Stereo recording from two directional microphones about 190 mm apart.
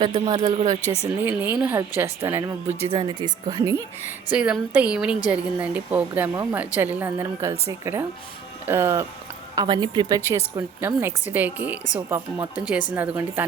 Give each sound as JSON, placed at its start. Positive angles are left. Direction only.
{"t": 0.0, "sound": "speech", "side_deg": -25}
{"t": 1.2, "sound": "speech", "side_deg": -10}
{"t": 4.4, "sound": "a woman's voice", "side_deg": -5}
{"t": 10.2, "sound": "speech", "side_deg": -15}